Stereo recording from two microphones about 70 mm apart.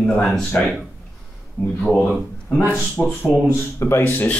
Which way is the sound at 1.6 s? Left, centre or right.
Centre.